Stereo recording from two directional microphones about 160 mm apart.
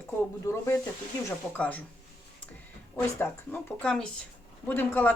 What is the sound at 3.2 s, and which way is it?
Speech, 10° left (ahead or behind).